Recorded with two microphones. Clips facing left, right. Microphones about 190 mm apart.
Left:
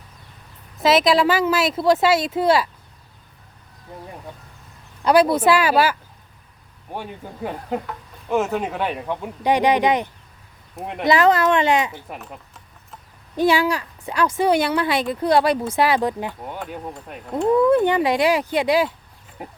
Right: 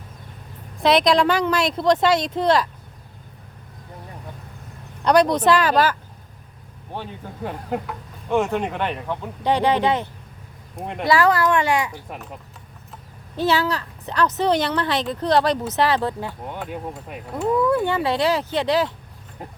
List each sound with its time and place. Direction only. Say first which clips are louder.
0.8 s speech: even; 5° left (ahead or behind)
5.0 s speech: left 1 dB; 5° left (ahead or behind)
7.7 s speech: even; centre (ahead or behind)
10.8 s speech: even; 5° left (ahead or behind)
11.0 s speech: left 2 dB; 20° left (ahead or behind)
12.0 s speech: even; centre (ahead or behind)
13.3 s speech: left 3 dB; 15° left (ahead or behind)
16.4 s speech: right 1 dB; centre (ahead or behind)
17.6 s speech: left 4 dB; 20° left (ahead or behind)